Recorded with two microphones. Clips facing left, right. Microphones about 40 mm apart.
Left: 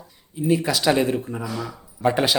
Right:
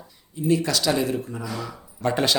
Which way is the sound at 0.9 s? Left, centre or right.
Left.